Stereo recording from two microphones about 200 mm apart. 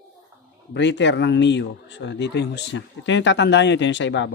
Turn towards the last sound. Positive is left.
turn(degrees=65)  # may be behind; listen again after turning